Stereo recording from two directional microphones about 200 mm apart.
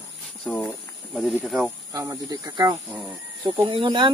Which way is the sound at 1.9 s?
15° right (ahead or behind).